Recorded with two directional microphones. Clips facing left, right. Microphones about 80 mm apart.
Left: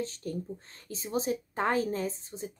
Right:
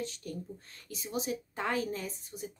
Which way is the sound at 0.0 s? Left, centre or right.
Left.